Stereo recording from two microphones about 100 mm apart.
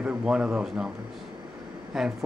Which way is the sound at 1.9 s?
Centre (ahead or behind).